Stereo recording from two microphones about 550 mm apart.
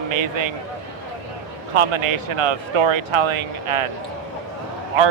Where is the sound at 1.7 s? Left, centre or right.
Right.